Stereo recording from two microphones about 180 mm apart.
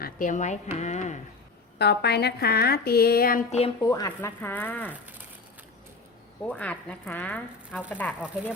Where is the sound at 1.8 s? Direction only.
65° left (ahead or behind).